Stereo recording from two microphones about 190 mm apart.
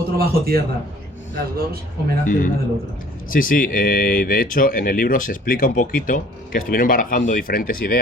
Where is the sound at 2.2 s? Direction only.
45° left (ahead or behind).